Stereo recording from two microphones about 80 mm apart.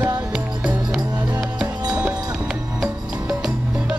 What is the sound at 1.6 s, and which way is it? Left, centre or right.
Music, right.